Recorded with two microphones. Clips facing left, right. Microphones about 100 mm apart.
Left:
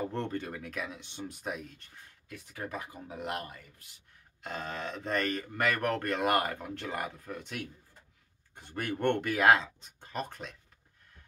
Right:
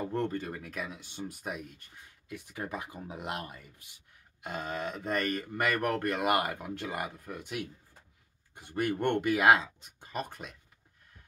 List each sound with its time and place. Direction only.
0.1 s speech: 10° right (ahead or behind)
2.2 s speech: 20° right (ahead or behind)